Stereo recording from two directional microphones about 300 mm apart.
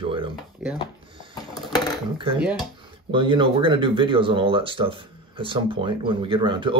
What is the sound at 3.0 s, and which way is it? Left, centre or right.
Speech, centre.